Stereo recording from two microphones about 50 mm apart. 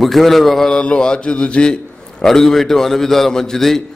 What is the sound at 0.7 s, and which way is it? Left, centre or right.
Mantra, centre.